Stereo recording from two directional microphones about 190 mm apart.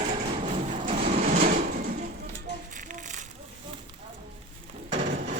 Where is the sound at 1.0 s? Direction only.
35° right (ahead or behind).